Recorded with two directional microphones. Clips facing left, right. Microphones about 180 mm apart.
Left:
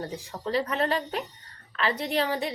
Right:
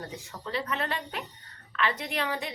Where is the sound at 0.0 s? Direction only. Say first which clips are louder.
Left 6 dB; 35° left (ahead or behind).